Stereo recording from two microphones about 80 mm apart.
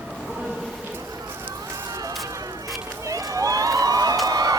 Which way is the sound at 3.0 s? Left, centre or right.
Right.